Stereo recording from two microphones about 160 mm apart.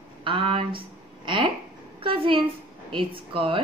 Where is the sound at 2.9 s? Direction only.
35° right (ahead or behind).